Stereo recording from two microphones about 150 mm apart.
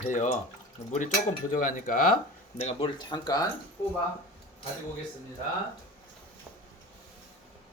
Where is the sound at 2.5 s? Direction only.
45° left (ahead or behind).